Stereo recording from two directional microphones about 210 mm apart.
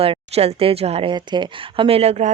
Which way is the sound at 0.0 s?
30° right (ahead or behind).